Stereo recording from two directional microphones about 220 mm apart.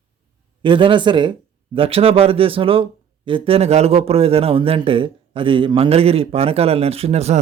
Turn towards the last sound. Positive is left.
turn(degrees=-30)  # may be behind; listen again after turning